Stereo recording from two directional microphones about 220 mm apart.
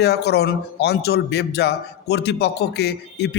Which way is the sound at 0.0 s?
50° left (ahead or behind).